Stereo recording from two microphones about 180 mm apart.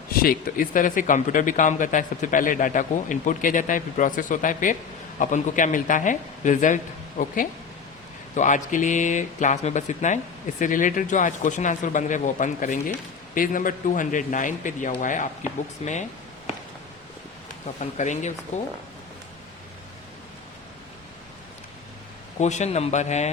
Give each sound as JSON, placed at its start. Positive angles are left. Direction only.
{"t": 0.1, "sound": "speech", "side_deg": 55}
{"t": 8.4, "sound": "a man's voice", "side_deg": 45}
{"t": 17.7, "sound": "a man's voice", "side_deg": 40}
{"t": 22.4, "sound": "a man's voice", "side_deg": 40}